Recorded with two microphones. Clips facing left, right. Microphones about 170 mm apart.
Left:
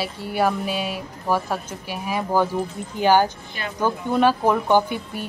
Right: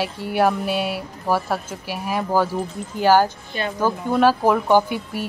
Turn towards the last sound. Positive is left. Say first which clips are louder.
# right 2 dB
turn(degrees=-5)  # may be behind; listen again after turning